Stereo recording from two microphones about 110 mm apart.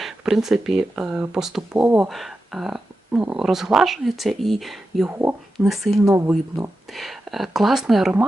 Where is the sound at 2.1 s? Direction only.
Centre (ahead or behind).